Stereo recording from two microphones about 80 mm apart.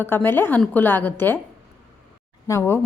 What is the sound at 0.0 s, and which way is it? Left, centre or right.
A woman's voice, left.